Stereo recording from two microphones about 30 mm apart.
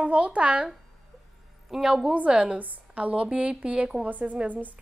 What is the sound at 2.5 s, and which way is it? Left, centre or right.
Speech, right.